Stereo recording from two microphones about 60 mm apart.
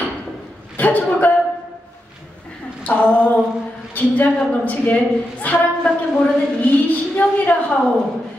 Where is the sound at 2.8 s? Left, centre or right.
Left.